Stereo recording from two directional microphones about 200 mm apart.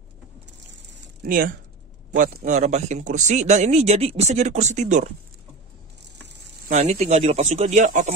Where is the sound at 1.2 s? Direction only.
45° right (ahead or behind).